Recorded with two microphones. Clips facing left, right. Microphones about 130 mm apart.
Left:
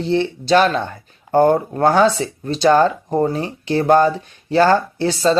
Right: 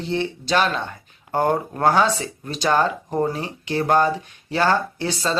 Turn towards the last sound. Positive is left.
turn(degrees=35)  # may be behind; listen again after turning